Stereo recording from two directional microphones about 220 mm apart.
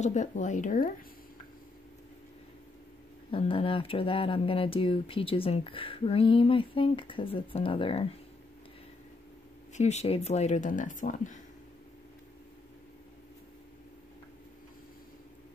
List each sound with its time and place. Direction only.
0.0 s speech: 35° left (ahead or behind)
3.3 s speech: 25° left (ahead or behind)
9.8 s speech: 30° left (ahead or behind)